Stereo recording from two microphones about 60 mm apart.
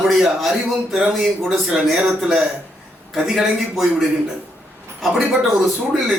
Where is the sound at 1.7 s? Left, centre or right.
Centre.